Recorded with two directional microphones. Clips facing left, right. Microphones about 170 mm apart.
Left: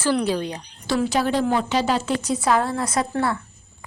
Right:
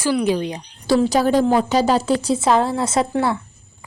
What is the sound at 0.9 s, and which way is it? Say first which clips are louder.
A woman's voice: right 5 dB; 35° right (ahead or behind).